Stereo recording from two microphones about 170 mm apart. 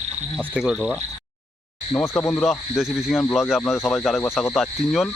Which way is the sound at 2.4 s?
Centre (ahead or behind).